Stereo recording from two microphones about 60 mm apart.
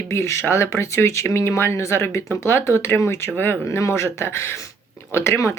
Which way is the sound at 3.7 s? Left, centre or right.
Left.